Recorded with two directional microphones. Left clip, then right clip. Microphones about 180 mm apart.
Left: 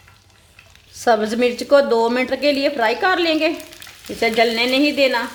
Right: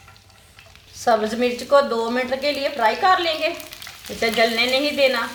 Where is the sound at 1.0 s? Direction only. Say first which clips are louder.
Left 2 dB; 55° left (ahead or behind).